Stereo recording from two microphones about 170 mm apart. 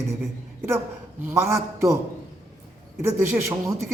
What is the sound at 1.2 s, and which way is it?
Speech, 15° right (ahead or behind).